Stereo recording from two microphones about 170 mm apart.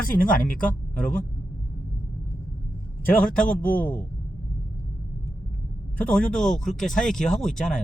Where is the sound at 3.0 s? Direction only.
10° left (ahead or behind).